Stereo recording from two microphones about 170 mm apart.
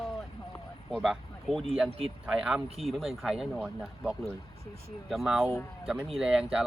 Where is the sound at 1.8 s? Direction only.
35° right (ahead or behind).